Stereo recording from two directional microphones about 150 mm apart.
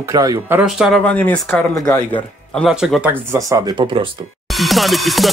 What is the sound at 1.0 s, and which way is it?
Speech, 10° left (ahead or behind).